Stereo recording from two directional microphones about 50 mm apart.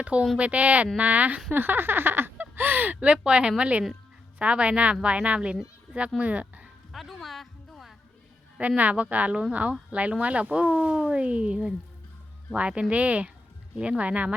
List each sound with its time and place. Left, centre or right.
0.0 s speech: right
6.9 s music: centre
8.5 s speech: right